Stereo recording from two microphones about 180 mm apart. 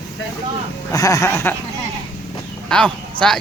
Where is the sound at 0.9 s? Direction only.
20° left (ahead or behind).